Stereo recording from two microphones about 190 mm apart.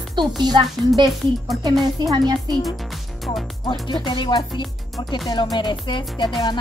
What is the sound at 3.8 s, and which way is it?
Speech, 25° left (ahead or behind).